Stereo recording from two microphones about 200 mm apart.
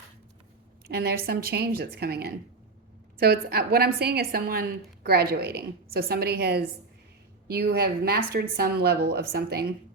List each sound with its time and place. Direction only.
0.9 s a woman's voice: 50° right (ahead or behind)